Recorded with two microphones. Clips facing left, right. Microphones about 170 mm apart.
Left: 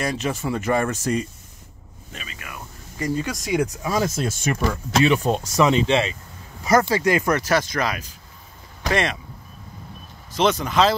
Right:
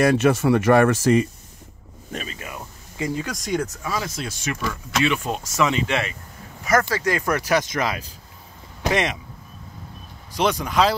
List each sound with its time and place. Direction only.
0.0 s speech: 70° right (ahead or behind); by 1.2 s 90° right
2.1 s a sound: 30° right (ahead or behind)
3.3 s speech: 5° left (ahead or behind)
3.9 s speech: 45° left (ahead or behind)
4.9 s a man's voice: 35° left (ahead or behind)
7.0 s speech: 15° left (ahead or behind)
7.2 s speech: 10° right (ahead or behind)
10.3 s speech: 10° right (ahead or behind)